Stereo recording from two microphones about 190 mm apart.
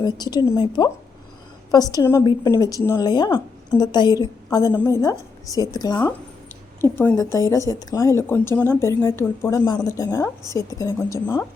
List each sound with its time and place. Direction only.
0.0 s a woman's voice: 20° left (ahead or behind)